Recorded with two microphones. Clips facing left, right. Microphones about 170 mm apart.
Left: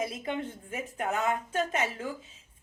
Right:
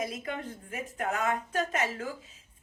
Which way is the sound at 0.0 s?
30° left (ahead or behind).